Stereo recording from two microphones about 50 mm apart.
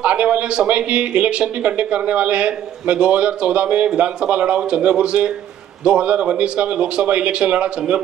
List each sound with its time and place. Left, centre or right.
0.0 s speech: right